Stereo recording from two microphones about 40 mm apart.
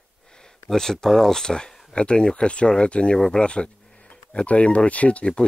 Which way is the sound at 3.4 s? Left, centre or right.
Left.